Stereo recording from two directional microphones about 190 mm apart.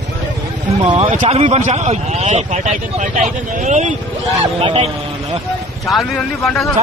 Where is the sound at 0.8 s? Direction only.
25° right (ahead or behind).